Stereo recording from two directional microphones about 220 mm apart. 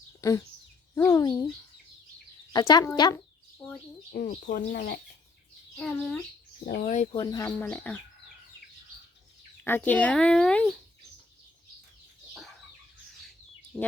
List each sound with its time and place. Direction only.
0.2 s speech: 15° left (ahead or behind)
2.5 s speech: 20° left (ahead or behind)
4.1 s speech: 45° left (ahead or behind)
5.7 s speech: 5° left (ahead or behind)
6.7 s speech: 40° left (ahead or behind)
7.1 s speech: 20° left (ahead or behind)
9.6 s speech: 10° left (ahead or behind)
13.7 s speech: 5° right (ahead or behind)